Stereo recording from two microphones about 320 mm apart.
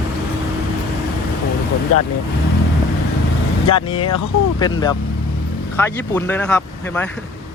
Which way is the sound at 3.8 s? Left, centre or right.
Centre.